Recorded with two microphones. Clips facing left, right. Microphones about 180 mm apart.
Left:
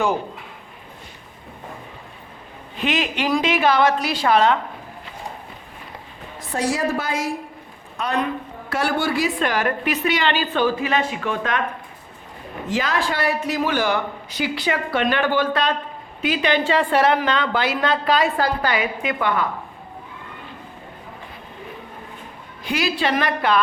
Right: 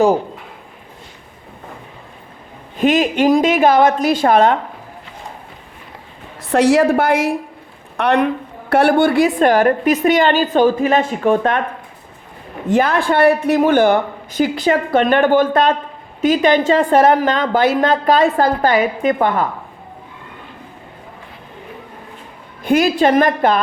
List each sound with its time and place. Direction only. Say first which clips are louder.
2.7 s a woman's voice: right 9 dB; 45° right (ahead or behind)
6.4 s a woman's voice: right 10 dB; 75° right (ahead or behind)
8.7 s a woman's voice: right 10 dB; 60° right (ahead or behind)
12.6 s a woman's voice: right 8 dB; 55° right (ahead or behind)
22.6 s a woman's voice: right 9 dB; 50° right (ahead or behind)